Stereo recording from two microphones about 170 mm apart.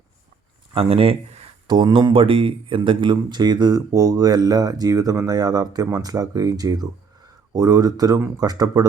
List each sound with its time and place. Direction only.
0.7 s speech: 35° right (ahead or behind)